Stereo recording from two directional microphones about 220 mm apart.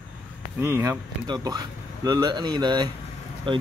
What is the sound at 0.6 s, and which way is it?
Speech, 10° right (ahead or behind).